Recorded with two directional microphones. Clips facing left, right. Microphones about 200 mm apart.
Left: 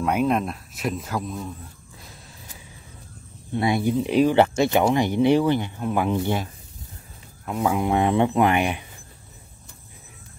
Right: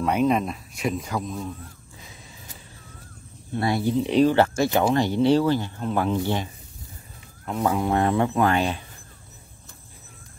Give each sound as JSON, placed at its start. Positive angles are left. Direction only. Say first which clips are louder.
{"t": 0.0, "sound": "speech", "louder": "even", "side_deg": 5}
{"t": 3.5, "sound": "speech", "louder": "left 2 dB", "side_deg": 15}
{"t": 3.9, "sound": "speech", "louder": "right 2 dB", "side_deg": 5}
{"t": 4.4, "sound": "speech", "louder": "left 2 dB", "side_deg": 20}
{"t": 7.4, "sound": "speech", "louder": "even", "side_deg": 5}
{"t": 7.7, "sound": "speech", "louder": "left 2 dB", "side_deg": 15}